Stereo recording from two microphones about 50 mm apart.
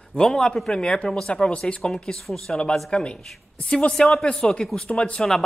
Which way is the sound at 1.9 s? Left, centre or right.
Centre.